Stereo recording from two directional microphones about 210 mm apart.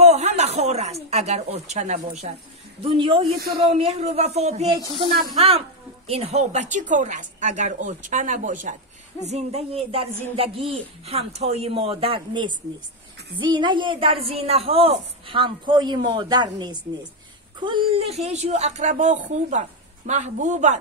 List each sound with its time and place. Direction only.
0.0 s speech: 30° right (ahead or behind)